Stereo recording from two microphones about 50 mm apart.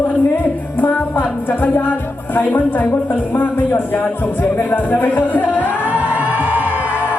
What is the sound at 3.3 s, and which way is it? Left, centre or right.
Speech, left.